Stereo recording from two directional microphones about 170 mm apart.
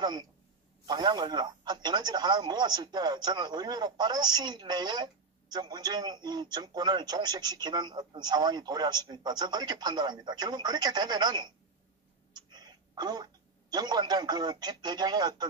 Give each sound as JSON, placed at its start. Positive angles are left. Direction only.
{"t": 0.0, "sound": "a man's voice", "side_deg": -25}